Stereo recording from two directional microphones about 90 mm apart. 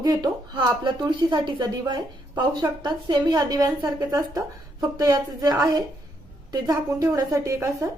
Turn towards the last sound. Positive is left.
turn(degrees=-35)  # may be behind; listen again after turning